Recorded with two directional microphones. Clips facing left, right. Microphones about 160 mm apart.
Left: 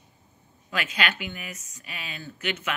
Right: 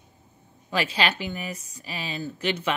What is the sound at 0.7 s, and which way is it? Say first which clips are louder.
Speech: right 4 dB; 30° right (ahead or behind).